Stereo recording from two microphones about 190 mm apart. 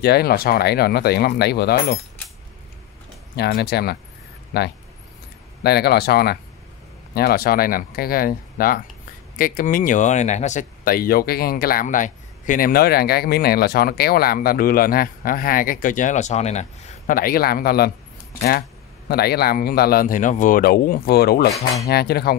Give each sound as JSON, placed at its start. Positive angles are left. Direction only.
{"t": 0.0, "sound": "speech", "side_deg": 55}
{"t": 3.3, "sound": "speech", "side_deg": 55}
{"t": 19.0, "sound": "speech", "side_deg": 55}